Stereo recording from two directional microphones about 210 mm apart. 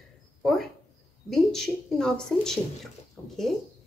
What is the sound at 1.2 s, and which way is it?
A woman's voice, centre (ahead or behind).